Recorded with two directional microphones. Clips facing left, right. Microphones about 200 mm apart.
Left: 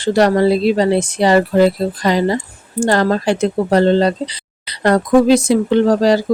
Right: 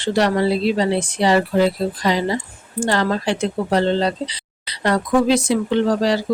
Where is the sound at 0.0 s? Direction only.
45° left (ahead or behind).